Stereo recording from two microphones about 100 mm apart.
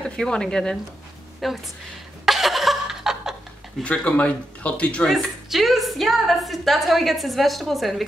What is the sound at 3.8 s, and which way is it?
Speech, 15° left (ahead or behind).